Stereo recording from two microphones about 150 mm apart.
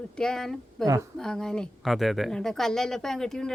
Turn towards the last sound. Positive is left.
turn(degrees=5)  # may be behind; listen again after turning